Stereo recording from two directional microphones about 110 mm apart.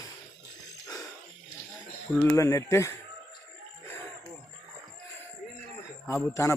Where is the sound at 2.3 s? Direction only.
25° left (ahead or behind).